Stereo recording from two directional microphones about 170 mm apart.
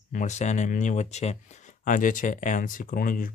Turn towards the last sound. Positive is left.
turn(degrees=55)  # may be behind; listen again after turning